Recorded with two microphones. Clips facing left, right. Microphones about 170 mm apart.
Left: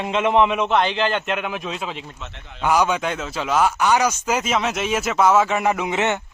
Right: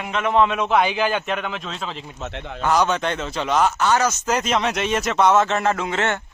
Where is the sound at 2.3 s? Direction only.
65° right (ahead or behind).